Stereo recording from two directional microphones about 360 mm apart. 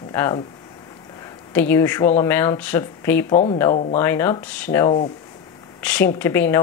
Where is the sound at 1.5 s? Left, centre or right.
Centre.